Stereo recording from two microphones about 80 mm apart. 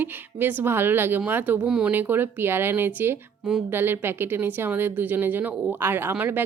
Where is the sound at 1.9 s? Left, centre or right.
Right.